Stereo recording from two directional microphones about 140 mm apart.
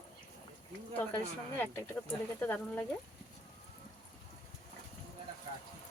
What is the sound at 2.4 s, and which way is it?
Speech, 10° left (ahead or behind).